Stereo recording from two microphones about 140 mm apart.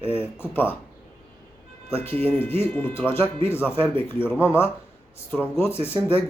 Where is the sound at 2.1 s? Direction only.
45° right (ahead or behind).